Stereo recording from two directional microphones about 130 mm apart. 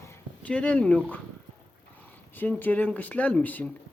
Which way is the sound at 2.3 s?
15° left (ahead or behind).